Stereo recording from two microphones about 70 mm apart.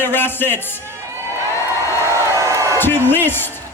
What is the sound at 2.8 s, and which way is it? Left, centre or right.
Speech, left.